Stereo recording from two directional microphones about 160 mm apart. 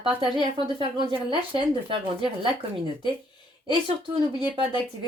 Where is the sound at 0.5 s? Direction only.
30° right (ahead or behind).